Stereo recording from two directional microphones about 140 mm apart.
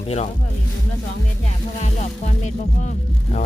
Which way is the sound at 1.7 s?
55° left (ahead or behind).